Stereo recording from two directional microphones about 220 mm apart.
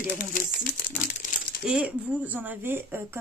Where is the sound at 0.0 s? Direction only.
40° left (ahead or behind).